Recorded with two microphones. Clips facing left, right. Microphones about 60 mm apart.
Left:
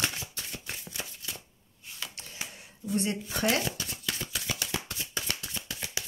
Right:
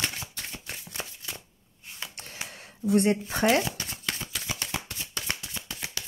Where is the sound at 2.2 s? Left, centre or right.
Right.